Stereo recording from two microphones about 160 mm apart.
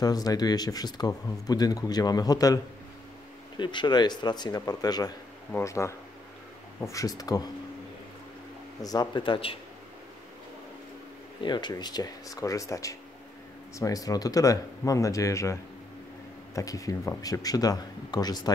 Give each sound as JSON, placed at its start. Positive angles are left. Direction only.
{"t": 0.0, "sound": "speech", "side_deg": 25}
{"t": 8.8, "sound": "speech", "side_deg": 25}
{"t": 11.4, "sound": "speech", "side_deg": 30}
{"t": 16.5, "sound": "speech", "side_deg": 20}